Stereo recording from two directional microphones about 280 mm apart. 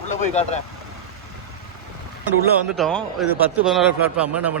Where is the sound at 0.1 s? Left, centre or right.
Left.